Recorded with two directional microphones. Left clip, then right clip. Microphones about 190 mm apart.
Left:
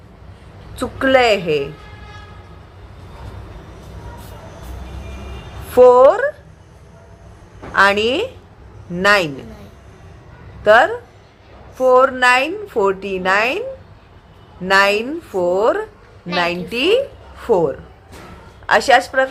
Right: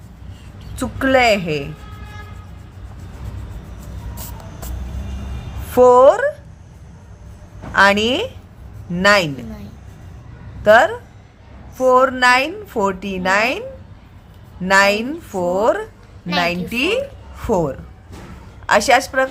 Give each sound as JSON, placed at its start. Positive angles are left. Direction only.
{"t": 0.8, "sound": "a woman's voice", "side_deg": -20}
{"t": 5.7, "sound": "speech", "side_deg": -25}
{"t": 7.7, "sound": "a woman's voice", "side_deg": -20}
{"t": 10.6, "sound": "a woman's voice", "side_deg": -20}